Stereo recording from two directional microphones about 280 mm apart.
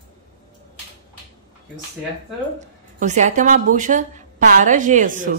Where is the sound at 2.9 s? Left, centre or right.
Right.